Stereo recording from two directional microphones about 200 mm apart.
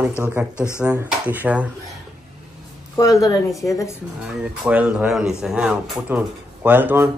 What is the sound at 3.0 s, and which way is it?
Speech, 15° left (ahead or behind).